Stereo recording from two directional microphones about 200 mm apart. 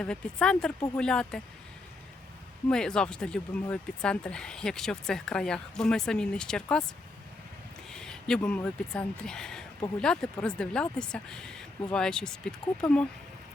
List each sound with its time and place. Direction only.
0.0 s speech: 5° left (ahead or behind)
2.6 s speech: 5° left (ahead or behind)
7.9 s speech: 5° left (ahead or behind)